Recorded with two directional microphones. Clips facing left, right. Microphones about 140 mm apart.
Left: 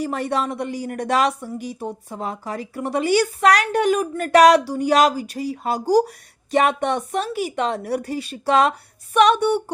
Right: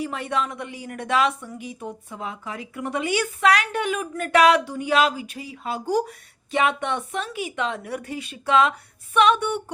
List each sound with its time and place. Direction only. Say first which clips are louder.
0.0 s a woman's voice: left 4 dB; 40° left (ahead or behind)